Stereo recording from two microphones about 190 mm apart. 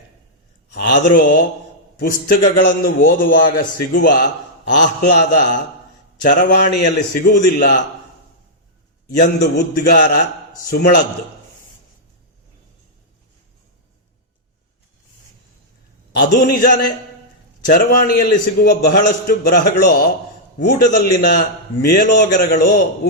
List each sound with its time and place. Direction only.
0.7 s a man's voice: 45° left (ahead or behind)
9.6 s a man's voice: 50° left (ahead or behind)
16.1 s a man's voice: 55° left (ahead or behind)